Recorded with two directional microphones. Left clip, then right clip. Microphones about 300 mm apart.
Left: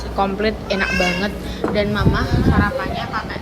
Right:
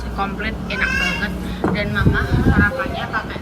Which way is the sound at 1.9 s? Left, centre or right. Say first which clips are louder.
Even; centre.